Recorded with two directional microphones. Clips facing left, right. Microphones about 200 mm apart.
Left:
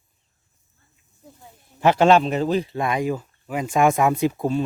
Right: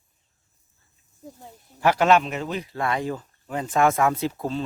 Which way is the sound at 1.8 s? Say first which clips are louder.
Left 3 dB; 25° left (ahead or behind).